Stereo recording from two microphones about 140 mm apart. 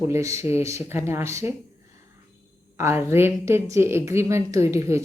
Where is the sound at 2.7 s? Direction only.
20° right (ahead or behind).